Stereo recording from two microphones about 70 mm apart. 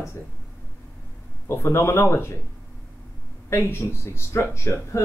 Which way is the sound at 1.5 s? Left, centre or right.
Left.